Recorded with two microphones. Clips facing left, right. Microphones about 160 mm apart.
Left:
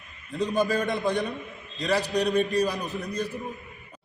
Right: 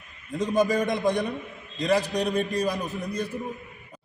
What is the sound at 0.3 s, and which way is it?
A man's voice, 15° right (ahead or behind).